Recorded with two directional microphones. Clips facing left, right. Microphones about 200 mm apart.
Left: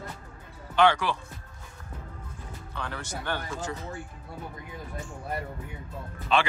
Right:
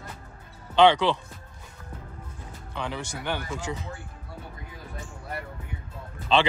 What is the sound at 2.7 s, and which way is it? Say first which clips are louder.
Speech: right 3 dB; 15° right (ahead or behind).